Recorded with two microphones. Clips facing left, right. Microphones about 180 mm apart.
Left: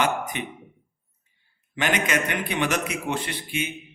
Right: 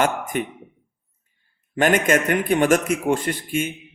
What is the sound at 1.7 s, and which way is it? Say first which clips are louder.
A man's voice: right 7 dB; 50° right (ahead or behind).